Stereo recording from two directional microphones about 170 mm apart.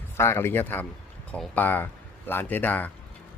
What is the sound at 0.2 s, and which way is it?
A man's voice, 15° left (ahead or behind).